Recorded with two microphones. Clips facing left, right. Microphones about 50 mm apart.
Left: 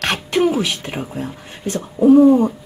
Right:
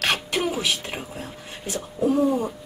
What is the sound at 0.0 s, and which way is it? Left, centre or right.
A woman's voice, centre.